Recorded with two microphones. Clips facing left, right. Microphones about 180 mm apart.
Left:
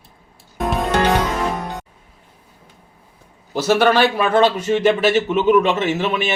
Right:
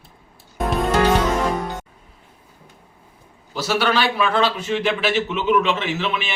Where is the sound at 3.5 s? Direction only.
50° left (ahead or behind).